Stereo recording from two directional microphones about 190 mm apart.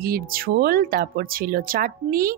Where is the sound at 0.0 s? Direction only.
50° right (ahead or behind).